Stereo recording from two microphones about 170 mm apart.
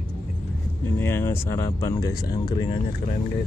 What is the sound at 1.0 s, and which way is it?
Speech, 15° left (ahead or behind).